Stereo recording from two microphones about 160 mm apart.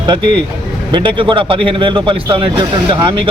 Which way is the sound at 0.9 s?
30° right (ahead or behind).